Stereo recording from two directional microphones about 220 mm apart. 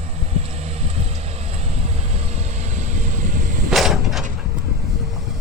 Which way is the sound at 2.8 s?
35° right (ahead or behind).